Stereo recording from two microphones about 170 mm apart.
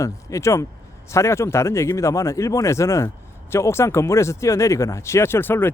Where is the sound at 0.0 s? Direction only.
15° left (ahead or behind).